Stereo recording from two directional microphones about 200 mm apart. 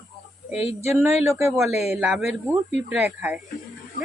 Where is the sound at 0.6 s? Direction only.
35° left (ahead or behind).